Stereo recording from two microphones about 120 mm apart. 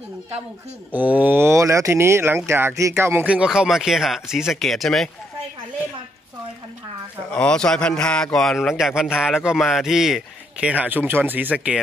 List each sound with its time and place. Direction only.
0.9 s speech: 15° right (ahead or behind)
3.3 s a man's voice: 10° right (ahead or behind)
7.2 s a man's voice: 10° left (ahead or behind); by 11.8 s 10° right (ahead or behind)